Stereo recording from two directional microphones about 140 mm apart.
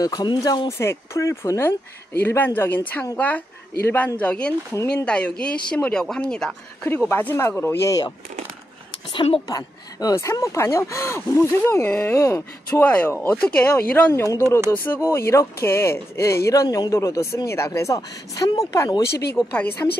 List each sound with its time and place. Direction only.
0.0 s speech: 30° left (ahead or behind)
9.1 s a woman's voice: 40° left (ahead or behind)
9.5 s speech: 25° left (ahead or behind)